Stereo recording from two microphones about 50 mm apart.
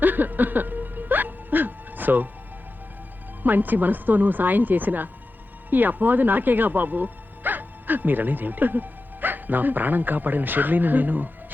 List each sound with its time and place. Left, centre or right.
0.0 s music: right
3.4 s speech: right